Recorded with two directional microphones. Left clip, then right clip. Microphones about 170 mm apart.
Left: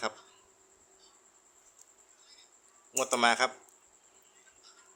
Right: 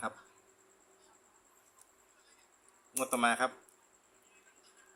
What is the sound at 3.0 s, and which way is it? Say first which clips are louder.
Speech: left 4 dB; 50° left (ahead or behind).